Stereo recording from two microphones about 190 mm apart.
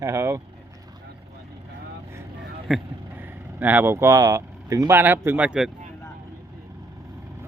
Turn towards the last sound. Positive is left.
turn(degrees=-5)  # may be behind; listen again after turning